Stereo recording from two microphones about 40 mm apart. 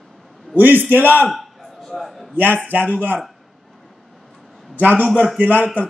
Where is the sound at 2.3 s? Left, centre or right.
Right.